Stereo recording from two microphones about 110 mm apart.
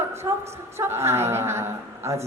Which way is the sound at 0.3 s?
30° right (ahead or behind).